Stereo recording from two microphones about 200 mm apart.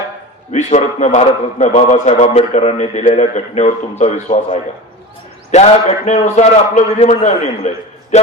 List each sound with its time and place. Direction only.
0.5 s a man's voice: 35° left (ahead or behind)